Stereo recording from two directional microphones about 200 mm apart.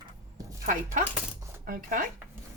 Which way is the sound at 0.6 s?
40° right (ahead or behind).